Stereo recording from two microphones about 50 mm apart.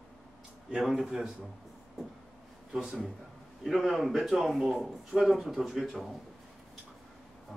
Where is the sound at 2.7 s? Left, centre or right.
Centre.